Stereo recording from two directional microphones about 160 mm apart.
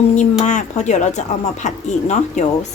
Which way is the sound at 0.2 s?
50° left (ahead or behind).